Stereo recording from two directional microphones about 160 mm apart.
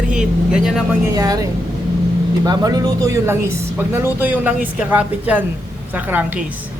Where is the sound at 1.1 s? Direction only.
25° right (ahead or behind).